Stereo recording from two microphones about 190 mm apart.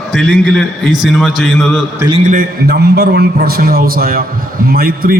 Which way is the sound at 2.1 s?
40° right (ahead or behind).